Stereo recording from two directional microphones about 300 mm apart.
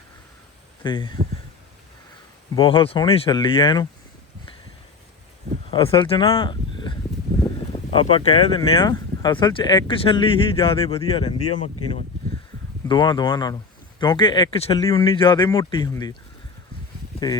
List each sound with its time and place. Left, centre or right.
0.8 s speech: centre
2.6 s speech: centre
5.7 s speech: centre
7.9 s speech: centre
12.9 s speech: centre